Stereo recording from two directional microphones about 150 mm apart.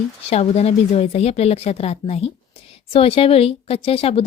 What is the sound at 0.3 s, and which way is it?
A woman's voice, 45° left (ahead or behind).